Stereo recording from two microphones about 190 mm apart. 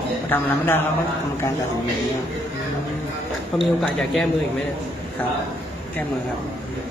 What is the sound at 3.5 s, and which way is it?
Speech, centre (ahead or behind).